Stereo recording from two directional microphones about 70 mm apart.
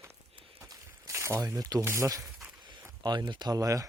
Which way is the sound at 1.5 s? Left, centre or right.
Right.